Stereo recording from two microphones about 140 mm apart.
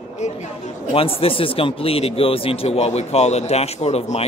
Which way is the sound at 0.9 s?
40° left (ahead or behind).